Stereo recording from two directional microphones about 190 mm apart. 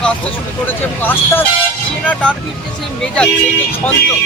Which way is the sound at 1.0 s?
10° left (ahead or behind).